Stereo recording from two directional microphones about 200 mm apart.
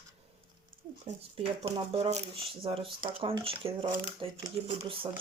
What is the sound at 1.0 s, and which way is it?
Speech, 30° right (ahead or behind).